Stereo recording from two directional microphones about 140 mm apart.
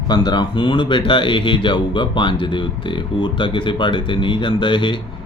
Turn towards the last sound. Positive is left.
turn(degrees=35)  # may be behind; listen again after turning